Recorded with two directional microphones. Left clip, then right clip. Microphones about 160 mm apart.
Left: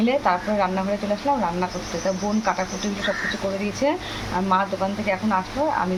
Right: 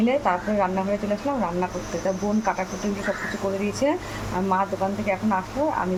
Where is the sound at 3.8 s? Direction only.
5° right (ahead or behind).